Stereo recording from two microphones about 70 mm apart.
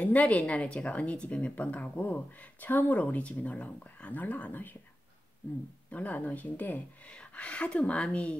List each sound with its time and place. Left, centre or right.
0.0 s a woman's voice: left
5.9 s a woman's voice: left